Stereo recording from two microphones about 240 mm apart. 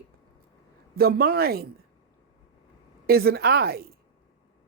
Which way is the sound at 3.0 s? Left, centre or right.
Right.